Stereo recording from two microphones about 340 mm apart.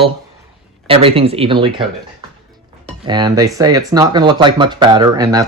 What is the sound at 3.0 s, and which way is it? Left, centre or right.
Speech, centre.